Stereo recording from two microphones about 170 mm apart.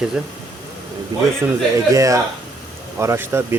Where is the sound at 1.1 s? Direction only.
25° right (ahead or behind).